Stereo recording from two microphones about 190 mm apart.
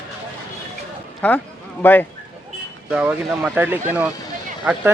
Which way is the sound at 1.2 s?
5° left (ahead or behind).